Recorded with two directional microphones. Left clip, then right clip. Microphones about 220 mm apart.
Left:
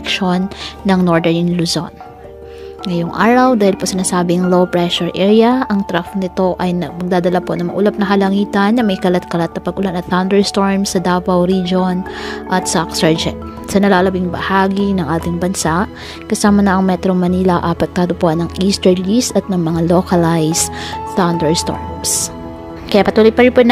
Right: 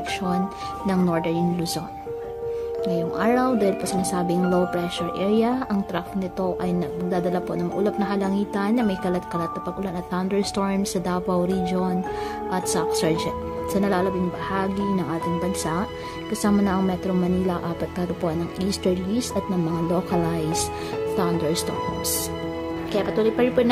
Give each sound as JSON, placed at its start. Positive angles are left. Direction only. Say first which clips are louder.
{"t": 0.1, "sound": "speech", "louder": "left 11 dB", "side_deg": 30}
{"t": 22.8, "sound": "speech", "louder": "left 13 dB", "side_deg": 35}